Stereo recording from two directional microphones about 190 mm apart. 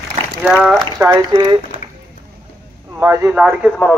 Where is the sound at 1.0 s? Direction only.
20° right (ahead or behind).